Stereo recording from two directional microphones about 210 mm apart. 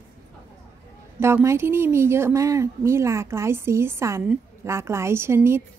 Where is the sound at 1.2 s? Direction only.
10° right (ahead or behind).